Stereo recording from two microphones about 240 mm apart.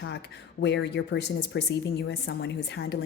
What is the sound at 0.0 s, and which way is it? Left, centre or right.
Speech, left.